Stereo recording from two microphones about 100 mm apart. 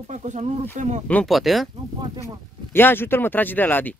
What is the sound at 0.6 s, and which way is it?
Speech, 15° left (ahead or behind).